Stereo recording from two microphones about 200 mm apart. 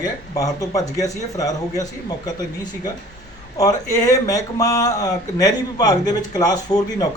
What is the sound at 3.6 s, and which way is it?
Speech, 15° left (ahead or behind).